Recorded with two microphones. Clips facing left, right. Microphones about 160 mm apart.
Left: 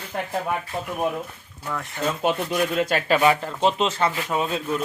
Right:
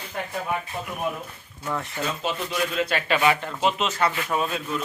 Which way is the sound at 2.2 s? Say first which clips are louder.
Left 6 dB; 50° left (ahead or behind).